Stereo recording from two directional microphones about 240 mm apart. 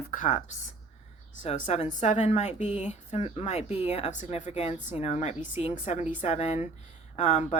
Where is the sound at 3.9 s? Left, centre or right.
Left.